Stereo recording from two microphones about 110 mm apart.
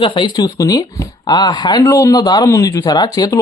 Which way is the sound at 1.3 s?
40° left (ahead or behind).